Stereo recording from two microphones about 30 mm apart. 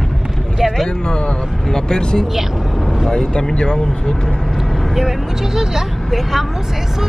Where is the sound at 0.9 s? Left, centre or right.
Left.